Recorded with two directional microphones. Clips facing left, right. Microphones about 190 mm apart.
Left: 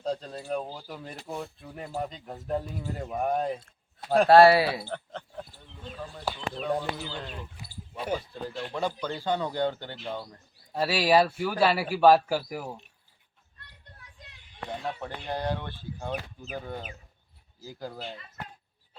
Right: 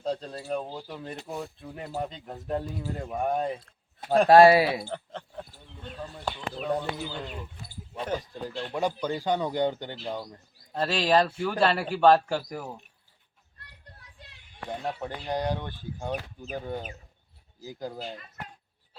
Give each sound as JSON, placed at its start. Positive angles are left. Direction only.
{"t": 0.0, "sound": "speech", "side_deg": 0}
{"t": 4.3, "sound": "speech", "side_deg": -15}
{"t": 4.9, "sound": "speech", "side_deg": 0}
{"t": 7.5, "sound": "speech", "side_deg": 10}
{"t": 8.2, "sound": "speech", "side_deg": -15}
{"t": 10.8, "sound": "speech", "side_deg": 5}
{"t": 15.3, "sound": "speech", "side_deg": -15}